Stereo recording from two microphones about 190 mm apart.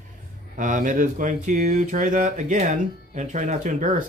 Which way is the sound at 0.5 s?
45° right (ahead or behind).